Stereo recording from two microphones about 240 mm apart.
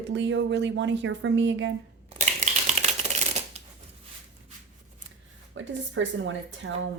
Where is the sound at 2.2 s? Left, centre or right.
Right.